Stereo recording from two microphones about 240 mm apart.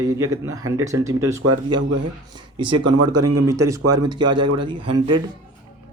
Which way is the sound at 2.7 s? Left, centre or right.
Right.